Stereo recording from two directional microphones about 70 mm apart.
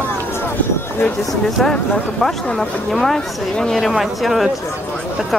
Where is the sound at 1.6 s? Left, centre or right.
Centre.